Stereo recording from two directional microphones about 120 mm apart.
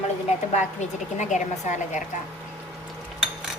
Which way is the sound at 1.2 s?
90° left.